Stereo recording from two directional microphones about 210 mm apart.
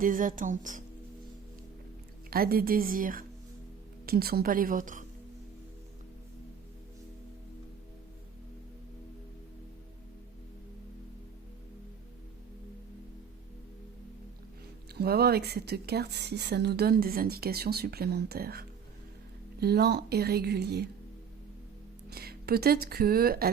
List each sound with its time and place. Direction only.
0.0 s a woman's voice: 40° right (ahead or behind)
2.3 s speech: 45° right (ahead or behind)
14.9 s speech: 50° right (ahead or behind)
22.1 s a woman's voice: 50° right (ahead or behind)